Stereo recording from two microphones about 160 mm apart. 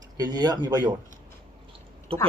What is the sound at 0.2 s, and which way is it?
Speech, 25° right (ahead or behind).